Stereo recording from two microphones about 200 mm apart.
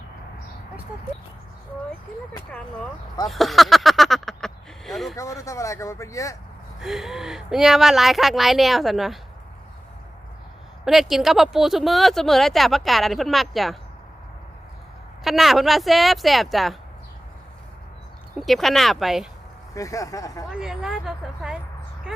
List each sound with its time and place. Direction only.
3.2 s a sound: centre (ahead or behind)
5.1 s speech: 15° left (ahead or behind)
6.8 s speech: centre (ahead or behind)
10.8 s speech: centre (ahead or behind)
15.2 s speech: centre (ahead or behind)
18.3 s speech: centre (ahead or behind)
19.7 s speech: 15° left (ahead or behind)
20.5 s speech: 5° right (ahead or behind)